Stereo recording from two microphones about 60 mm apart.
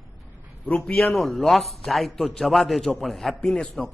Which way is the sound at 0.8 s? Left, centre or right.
Centre.